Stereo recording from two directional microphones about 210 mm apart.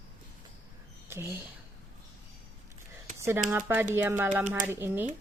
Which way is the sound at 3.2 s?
10° right (ahead or behind).